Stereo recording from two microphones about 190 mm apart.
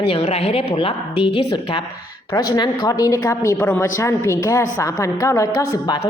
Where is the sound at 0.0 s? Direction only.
30° left (ahead or behind).